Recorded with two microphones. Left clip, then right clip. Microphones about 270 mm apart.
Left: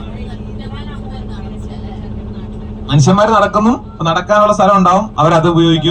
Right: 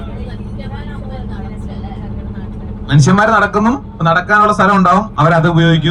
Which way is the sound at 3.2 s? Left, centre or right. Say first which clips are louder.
Left 1 dB; right.